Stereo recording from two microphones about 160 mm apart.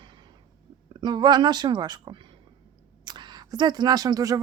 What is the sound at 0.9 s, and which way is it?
A woman's voice, 25° right (ahead or behind).